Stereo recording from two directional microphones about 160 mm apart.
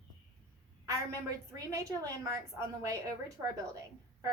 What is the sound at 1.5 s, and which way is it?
A woman's voice, 20° right (ahead or behind).